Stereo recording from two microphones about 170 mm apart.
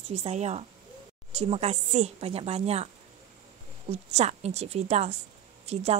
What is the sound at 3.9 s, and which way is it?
Speech, 40° right (ahead or behind).